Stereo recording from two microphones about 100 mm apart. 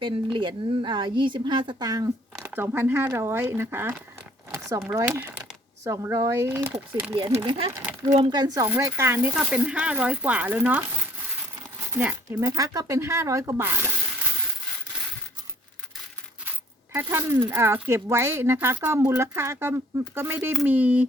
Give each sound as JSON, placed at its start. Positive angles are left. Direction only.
{"t": 0.0, "sound": "speech", "side_deg": -60}
{"t": 2.4, "sound": "speech", "side_deg": -20}
{"t": 6.5, "sound": "speech", "side_deg": -20}
{"t": 7.3, "sound": "speech", "side_deg": -50}
{"t": 8.8, "sound": "speech", "side_deg": -25}
{"t": 9.3, "sound": "speech", "side_deg": -15}
{"t": 11.9, "sound": "speech", "side_deg": -15}
{"t": 12.5, "sound": "speech", "side_deg": -35}
{"t": 16.9, "sound": "speech", "side_deg": -25}